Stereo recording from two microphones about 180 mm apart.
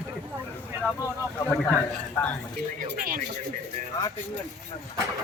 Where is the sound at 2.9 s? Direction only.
50° right (ahead or behind).